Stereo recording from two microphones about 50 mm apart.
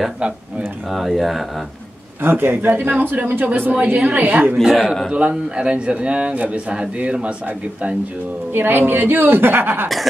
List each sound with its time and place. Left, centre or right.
0.8 s speech: centre
2.2 s a man's voice: right
4.8 s speech: centre
5.1 s a man's voice: right
8.5 s a woman's voice: right